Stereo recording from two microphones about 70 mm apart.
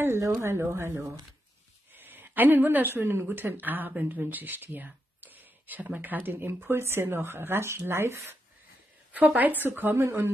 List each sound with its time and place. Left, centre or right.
0.3 s a woman's voice: right
9.1 s a woman's voice: right